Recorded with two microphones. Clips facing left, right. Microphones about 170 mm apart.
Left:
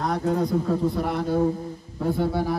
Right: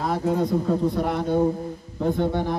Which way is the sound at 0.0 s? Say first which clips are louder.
Right 1 dB; centre (ahead or behind).